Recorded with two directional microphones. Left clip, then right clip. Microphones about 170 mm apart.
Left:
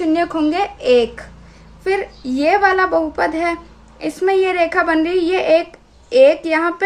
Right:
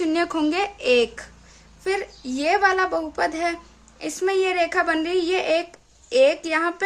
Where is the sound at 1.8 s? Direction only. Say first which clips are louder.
Left 6 dB; 15° right (ahead or behind).